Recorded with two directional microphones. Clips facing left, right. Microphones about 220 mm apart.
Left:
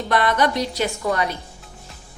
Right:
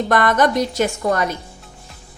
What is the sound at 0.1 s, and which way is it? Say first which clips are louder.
A woman's voice: right 2 dB; 50° right (ahead or behind).